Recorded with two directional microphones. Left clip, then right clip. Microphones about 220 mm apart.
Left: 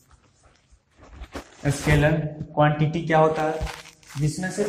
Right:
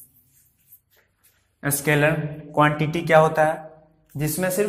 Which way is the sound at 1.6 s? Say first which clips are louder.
Right 2 dB; 50° right (ahead or behind).